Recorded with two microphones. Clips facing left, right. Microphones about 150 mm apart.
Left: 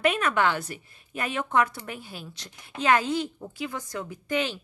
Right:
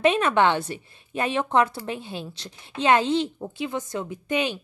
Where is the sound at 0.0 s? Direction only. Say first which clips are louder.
Right 4 dB; 25° right (ahead or behind).